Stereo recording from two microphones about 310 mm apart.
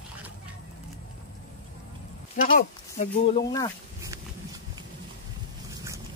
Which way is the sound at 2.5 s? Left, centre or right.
Left.